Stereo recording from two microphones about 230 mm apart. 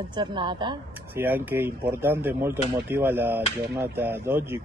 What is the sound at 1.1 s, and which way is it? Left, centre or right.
Speech, centre.